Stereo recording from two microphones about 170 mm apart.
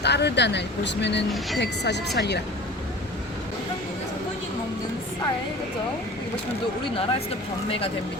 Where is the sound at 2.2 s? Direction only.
75° left (ahead or behind).